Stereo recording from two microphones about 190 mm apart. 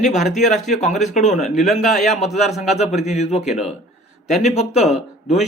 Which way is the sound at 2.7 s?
35° left (ahead or behind).